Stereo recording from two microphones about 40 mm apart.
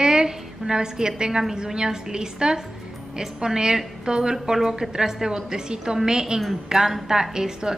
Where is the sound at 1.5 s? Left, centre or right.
Centre.